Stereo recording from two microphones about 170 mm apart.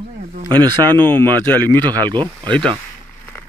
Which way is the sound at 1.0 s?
10° left (ahead or behind).